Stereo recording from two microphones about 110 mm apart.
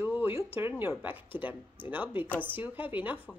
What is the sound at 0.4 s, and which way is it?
Speech, 20° right (ahead or behind).